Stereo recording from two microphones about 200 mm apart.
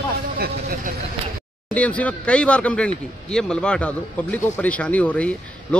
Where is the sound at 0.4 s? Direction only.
45° right (ahead or behind).